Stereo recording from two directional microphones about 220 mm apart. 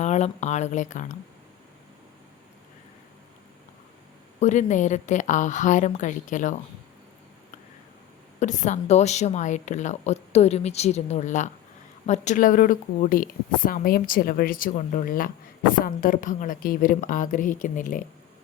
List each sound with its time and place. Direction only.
0.0 s a woman's voice: 30° left (ahead or behind)
4.4 s a woman's voice: 35° left (ahead or behind)
8.4 s a woman's voice: 35° left (ahead or behind)